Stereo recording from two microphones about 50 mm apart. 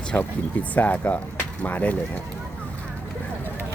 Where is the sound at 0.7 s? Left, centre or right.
Left.